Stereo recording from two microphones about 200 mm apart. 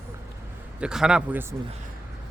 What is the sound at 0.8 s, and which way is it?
Speech, 5° right (ahead or behind).